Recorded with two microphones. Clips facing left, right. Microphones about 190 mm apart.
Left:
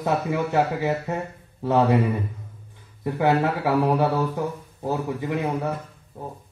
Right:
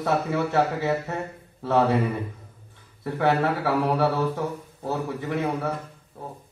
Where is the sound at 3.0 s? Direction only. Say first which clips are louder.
Left 1 dB; 15° left (ahead or behind).